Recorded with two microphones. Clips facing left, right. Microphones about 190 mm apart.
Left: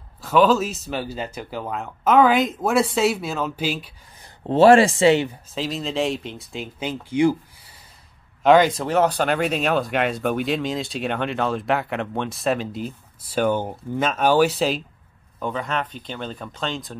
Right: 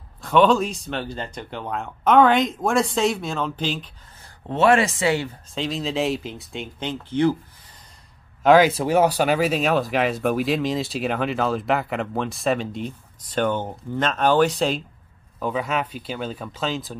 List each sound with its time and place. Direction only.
0.2 s speech: 5° left (ahead or behind)
4.4 s speech: 30° left (ahead or behind)
5.5 s speech: centre (ahead or behind)
8.4 s speech: 5° right (ahead or behind)